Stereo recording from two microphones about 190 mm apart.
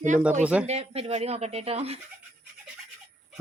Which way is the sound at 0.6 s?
35° right (ahead or behind).